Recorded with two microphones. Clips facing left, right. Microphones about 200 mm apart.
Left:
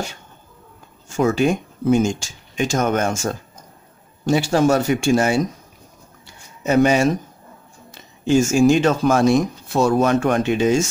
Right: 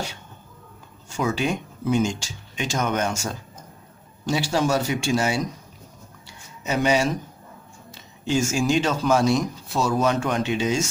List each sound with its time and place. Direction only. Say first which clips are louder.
1.1 s speech: left 7 dB; 50° left (ahead or behind)
4.3 s speech: left 6 dB; 50° left (ahead or behind)
6.2 s a sound: left 8 dB; 50° left (ahead or behind)
8.3 s speech: left 8 dB; 50° left (ahead or behind)